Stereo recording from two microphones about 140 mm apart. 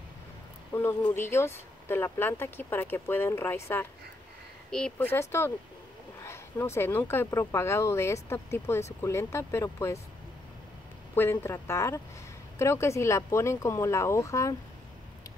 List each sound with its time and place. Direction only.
0.7 s speech: 20° left (ahead or behind)
4.6 s speech: 5° left (ahead or behind)
6.2 s speech: 20° left (ahead or behind)
11.1 s speech: 15° left (ahead or behind)